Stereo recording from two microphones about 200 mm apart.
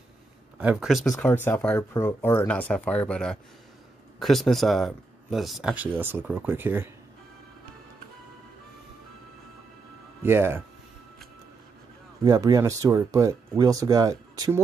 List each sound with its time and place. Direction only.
0.6 s speech: 5° right (ahead or behind)
10.2 s speech: 10° right (ahead or behind)
12.3 s speech: 20° right (ahead or behind)